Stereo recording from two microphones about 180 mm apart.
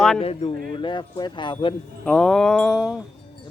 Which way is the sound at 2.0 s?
5° left (ahead or behind).